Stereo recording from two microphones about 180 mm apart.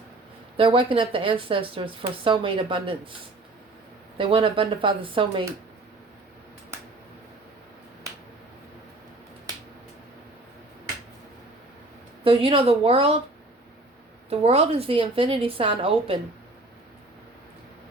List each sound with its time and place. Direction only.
0.5 s speech: 30° right (ahead or behind)
4.2 s speech: 30° right (ahead or behind)
12.2 s a woman's voice: 30° right (ahead or behind)
14.3 s a woman's voice: 35° right (ahead or behind)